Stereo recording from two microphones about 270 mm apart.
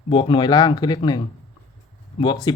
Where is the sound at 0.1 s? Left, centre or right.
Centre.